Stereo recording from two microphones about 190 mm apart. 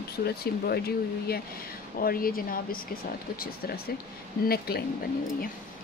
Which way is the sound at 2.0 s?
50° left (ahead or behind).